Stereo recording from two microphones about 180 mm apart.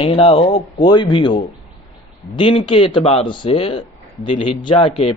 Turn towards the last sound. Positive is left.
turn(degrees=30)  # may be behind; listen again after turning